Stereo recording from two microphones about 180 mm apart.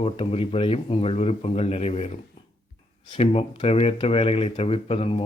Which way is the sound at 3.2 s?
35° left (ahead or behind).